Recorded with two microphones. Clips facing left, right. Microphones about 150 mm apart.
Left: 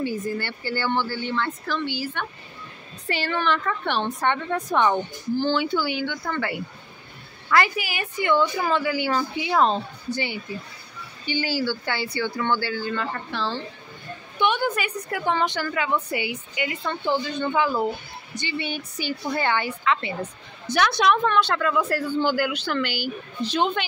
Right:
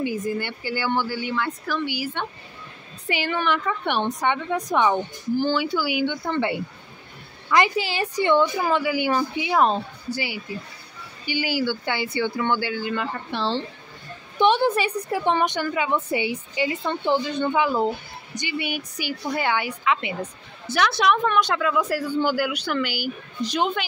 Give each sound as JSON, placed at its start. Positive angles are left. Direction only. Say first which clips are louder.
{"t": 0.0, "sound": "a woman's voice", "louder": "right 1 dB", "side_deg": -15}
{"t": 6.0, "sound": "a woman's voice", "louder": "right 4 dB", "side_deg": -25}
{"t": 20.2, "sound": "a woman's voice", "louder": "even", "side_deg": 0}